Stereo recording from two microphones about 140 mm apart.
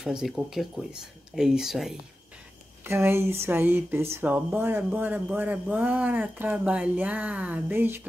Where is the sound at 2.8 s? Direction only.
15° right (ahead or behind).